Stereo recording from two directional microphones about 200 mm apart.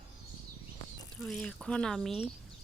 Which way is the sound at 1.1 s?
5° left (ahead or behind).